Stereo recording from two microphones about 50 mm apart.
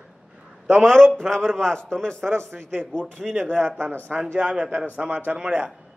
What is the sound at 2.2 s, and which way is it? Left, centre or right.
Speech, right.